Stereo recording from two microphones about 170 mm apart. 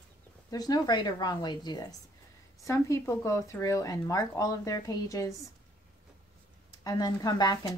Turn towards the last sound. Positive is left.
turn(degrees=25)  # may be behind; listen again after turning